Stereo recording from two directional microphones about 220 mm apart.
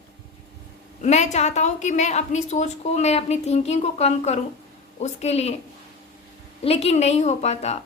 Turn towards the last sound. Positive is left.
turn(degrees=30)  # may be behind; listen again after turning